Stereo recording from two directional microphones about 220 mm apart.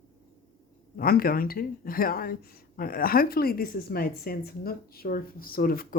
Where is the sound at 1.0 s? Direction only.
40° left (ahead or behind).